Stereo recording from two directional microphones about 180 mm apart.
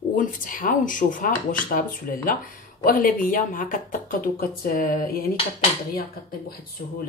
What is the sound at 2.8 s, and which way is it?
Speech, 50° left (ahead or behind).